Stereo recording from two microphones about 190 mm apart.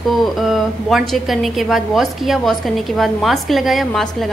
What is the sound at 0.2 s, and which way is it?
A woman's voice, centre (ahead or behind).